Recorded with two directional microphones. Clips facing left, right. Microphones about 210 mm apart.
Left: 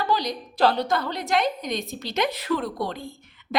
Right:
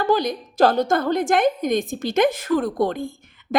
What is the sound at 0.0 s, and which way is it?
A woman's voice, 50° right (ahead or behind).